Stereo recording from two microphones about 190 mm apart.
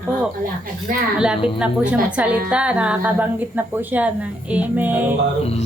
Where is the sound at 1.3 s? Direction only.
25° left (ahead or behind).